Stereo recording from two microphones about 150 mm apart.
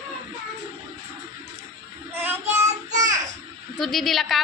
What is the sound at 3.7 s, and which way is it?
Speech, centre (ahead or behind).